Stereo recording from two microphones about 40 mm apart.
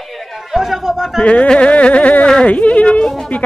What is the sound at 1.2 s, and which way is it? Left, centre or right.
Speech, left.